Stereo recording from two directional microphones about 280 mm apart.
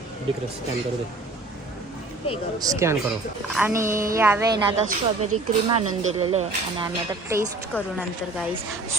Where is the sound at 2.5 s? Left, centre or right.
Centre.